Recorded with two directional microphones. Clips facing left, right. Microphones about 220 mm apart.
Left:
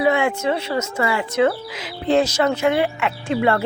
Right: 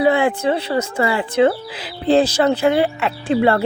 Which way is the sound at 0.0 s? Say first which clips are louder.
Right 3 dB; 35° right (ahead or behind).